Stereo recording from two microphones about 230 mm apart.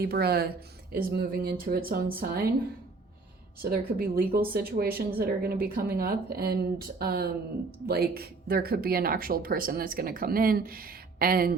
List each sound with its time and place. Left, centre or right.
0.0 s speech: right
3.6 s speech: right